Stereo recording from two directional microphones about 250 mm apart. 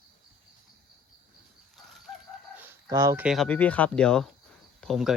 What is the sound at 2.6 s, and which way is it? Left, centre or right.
Speech, centre.